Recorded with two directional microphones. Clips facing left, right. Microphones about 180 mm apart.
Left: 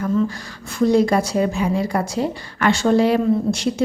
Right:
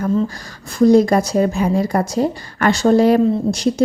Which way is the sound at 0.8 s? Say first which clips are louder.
Right 4 dB; 40° right (ahead or behind).